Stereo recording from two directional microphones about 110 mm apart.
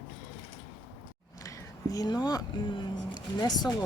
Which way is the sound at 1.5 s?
35° left (ahead or behind).